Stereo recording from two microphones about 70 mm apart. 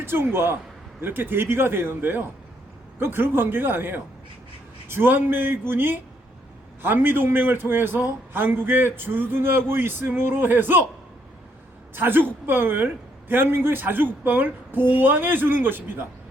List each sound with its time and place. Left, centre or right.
0.0 s a man's voice: right
11.9 s a woman's voice: right